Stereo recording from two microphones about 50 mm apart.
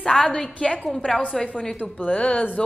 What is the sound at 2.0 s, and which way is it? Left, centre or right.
Speech, left.